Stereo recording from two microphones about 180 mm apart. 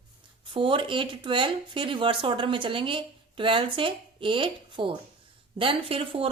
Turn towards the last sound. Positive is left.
turn(degrees=-30)  # may be behind; listen again after turning